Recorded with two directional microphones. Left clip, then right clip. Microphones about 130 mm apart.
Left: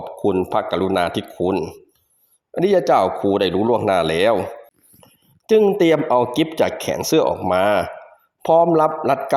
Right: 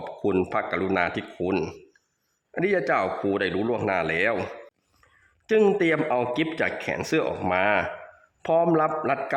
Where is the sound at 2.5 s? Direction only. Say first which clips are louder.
Left 8 dB; 30° left (ahead or behind).